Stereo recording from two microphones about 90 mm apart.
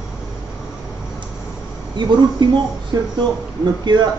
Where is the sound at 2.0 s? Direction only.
55° right (ahead or behind).